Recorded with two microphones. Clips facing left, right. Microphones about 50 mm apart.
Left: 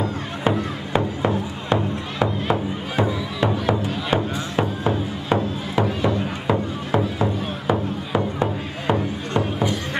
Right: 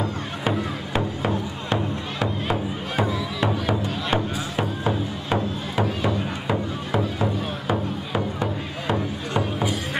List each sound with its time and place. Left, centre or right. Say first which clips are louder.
0.0 s music: left 3 dB; centre
8.2 s music: left 2 dB; left